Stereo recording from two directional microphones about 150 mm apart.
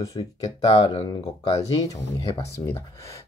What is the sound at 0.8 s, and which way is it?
Speech, 25° left (ahead or behind).